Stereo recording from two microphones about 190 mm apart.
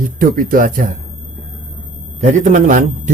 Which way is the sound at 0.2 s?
45° right (ahead or behind).